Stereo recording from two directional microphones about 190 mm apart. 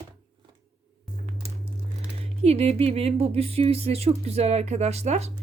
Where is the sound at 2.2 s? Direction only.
30° right (ahead or behind).